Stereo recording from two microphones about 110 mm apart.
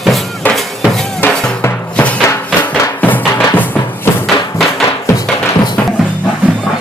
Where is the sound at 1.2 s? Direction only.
15° left (ahead or behind).